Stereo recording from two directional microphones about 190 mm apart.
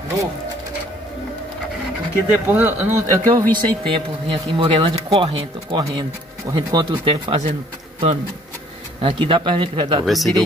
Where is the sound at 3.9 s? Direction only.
25° right (ahead or behind).